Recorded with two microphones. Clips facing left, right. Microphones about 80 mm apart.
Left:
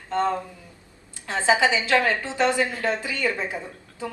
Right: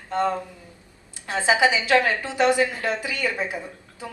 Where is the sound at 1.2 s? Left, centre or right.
Centre.